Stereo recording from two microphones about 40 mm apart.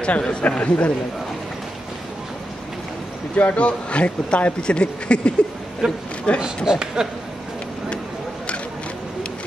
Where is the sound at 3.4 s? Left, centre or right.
Left.